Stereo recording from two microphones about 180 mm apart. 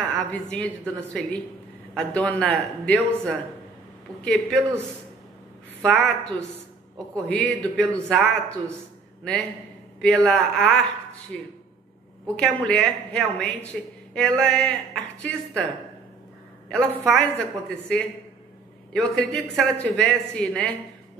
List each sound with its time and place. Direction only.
0.0 s a woman's voice: 10° left (ahead or behind)
2.0 s a woman's voice: 5° left (ahead or behind)
5.8 s a woman's voice: 5° left (ahead or behind)
16.6 s a woman's voice: 5° left (ahead or behind)